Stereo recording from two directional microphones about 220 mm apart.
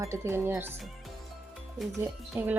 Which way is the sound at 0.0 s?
10° right (ahead or behind).